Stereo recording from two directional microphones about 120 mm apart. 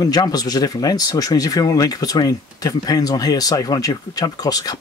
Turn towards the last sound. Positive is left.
turn(degrees=30)  # may be behind; listen again after turning